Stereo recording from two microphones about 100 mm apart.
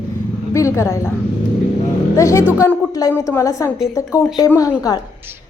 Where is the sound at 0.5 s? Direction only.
30° left (ahead or behind).